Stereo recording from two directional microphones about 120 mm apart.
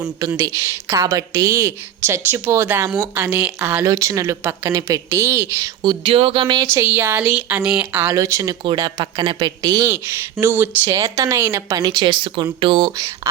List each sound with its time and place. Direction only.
0.3 s a woman's voice: 20° right (ahead or behind)
5.8 s speech: 40° right (ahead or behind)
6.7 s a woman's voice: 20° right (ahead or behind)
9.8 s a woman's voice: 20° right (ahead or behind)
10.8 s a woman's voice: 30° right (ahead or behind)
11.9 s a woman's voice: 40° right (ahead or behind)